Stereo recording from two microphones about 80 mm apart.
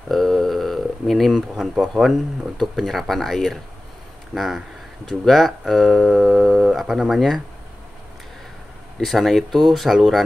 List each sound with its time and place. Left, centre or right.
0.1 s speech: centre
9.0 s speech: centre